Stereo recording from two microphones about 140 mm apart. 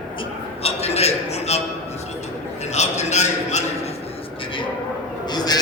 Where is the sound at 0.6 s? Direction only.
50° left (ahead or behind).